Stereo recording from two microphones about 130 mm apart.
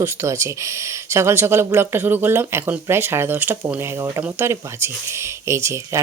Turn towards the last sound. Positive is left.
turn(degrees=-20)  # may be behind; listen again after turning